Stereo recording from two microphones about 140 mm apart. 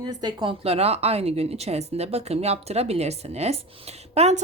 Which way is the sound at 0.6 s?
45° right (ahead or behind).